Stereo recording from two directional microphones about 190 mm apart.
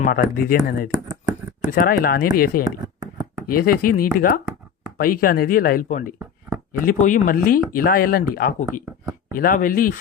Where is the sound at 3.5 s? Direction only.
50° left (ahead or behind).